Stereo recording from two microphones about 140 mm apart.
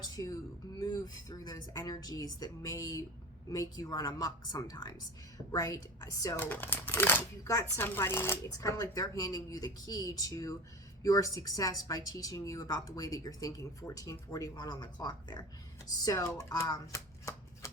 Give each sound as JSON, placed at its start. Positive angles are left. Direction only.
{"t": 0.0, "sound": "speech", "side_deg": 25}
{"t": 6.4, "sound": "speech", "side_deg": 15}